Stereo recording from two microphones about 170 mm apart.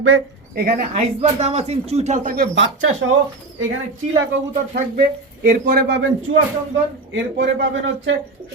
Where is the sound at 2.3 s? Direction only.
75° right (ahead or behind).